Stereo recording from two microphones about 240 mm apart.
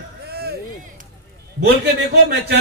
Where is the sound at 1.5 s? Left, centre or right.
Right.